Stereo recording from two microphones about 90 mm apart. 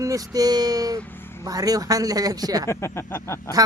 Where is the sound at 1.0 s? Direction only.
25° left (ahead or behind).